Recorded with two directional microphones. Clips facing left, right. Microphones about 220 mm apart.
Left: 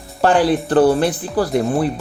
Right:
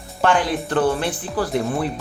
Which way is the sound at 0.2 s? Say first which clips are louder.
Left 5 dB; 35° left (ahead or behind).